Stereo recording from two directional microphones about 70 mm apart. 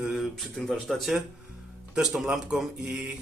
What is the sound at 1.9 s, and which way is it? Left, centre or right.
Speech, centre.